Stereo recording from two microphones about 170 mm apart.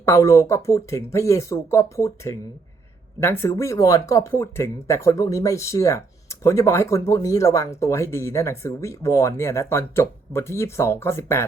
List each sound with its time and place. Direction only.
0.0 s speech: 15° left (ahead or behind)